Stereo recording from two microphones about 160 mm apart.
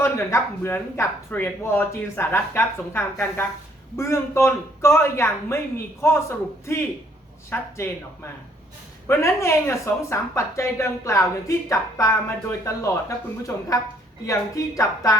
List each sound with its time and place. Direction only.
0.0 s a woman's voice: 15° left (ahead or behind)